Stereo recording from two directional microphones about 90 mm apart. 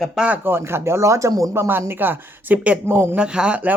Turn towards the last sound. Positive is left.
turn(degrees=-15)  # may be behind; listen again after turning